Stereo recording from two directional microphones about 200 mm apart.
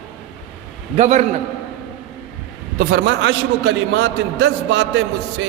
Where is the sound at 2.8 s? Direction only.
50° right (ahead or behind).